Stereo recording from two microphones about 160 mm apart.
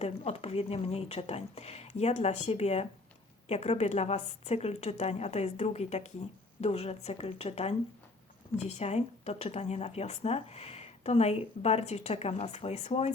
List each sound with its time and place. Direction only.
0.0 s a woman's voice: 40° left (ahead or behind)